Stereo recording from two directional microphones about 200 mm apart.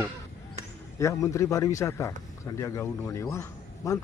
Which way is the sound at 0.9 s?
15° left (ahead or behind).